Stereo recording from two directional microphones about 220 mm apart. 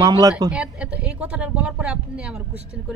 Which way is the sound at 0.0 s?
15° right (ahead or behind).